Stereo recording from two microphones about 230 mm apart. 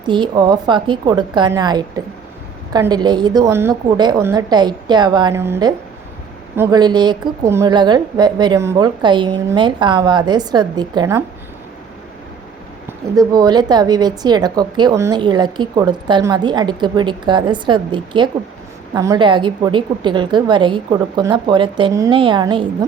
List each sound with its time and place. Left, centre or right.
0.1 s a woman's voice: centre
13.1 s a woman's voice: centre